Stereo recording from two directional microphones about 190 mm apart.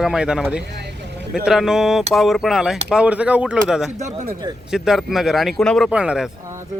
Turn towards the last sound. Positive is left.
turn(degrees=-15)  # may be behind; listen again after turning